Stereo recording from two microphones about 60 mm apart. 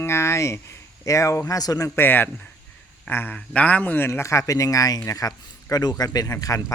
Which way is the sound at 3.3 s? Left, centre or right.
Left.